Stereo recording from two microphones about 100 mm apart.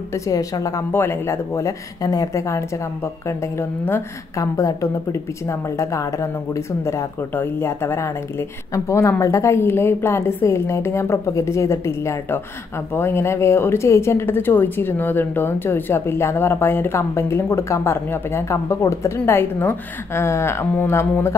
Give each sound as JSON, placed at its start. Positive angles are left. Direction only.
{"t": 0.1, "sound": "a woman's voice", "side_deg": 35}
{"t": 0.9, "sound": "speech", "side_deg": 25}